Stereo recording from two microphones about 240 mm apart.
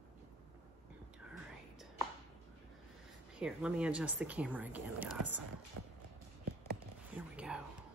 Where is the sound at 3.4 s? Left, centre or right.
Centre.